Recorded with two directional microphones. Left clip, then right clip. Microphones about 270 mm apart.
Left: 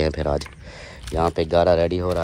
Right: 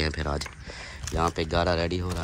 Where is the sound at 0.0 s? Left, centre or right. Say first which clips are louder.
Left 7 dB; centre.